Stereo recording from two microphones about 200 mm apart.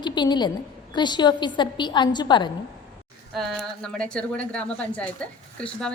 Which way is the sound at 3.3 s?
Centre (ahead or behind).